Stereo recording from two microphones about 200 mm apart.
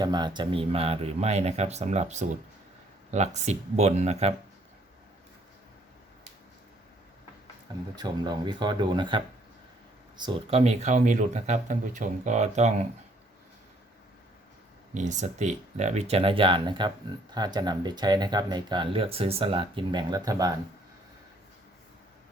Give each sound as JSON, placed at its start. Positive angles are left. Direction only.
{"t": 0.0, "sound": "speech", "side_deg": -20}
{"t": 7.9, "sound": "speech", "side_deg": -20}
{"t": 10.6, "sound": "speech", "side_deg": -35}
{"t": 14.9, "sound": "speech", "side_deg": -35}